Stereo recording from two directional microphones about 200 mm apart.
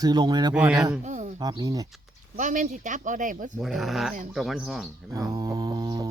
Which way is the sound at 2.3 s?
40° right (ahead or behind).